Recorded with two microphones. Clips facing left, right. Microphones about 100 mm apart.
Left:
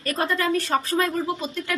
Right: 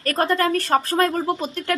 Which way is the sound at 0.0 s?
50° right (ahead or behind).